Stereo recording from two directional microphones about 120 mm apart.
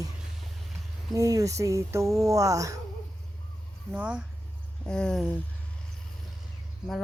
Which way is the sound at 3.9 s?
10° right (ahead or behind).